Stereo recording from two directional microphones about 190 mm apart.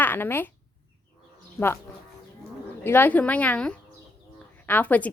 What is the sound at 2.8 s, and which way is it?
A woman's voice, 10° left (ahead or behind).